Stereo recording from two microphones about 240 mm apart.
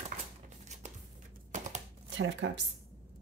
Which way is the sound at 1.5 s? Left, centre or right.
Right.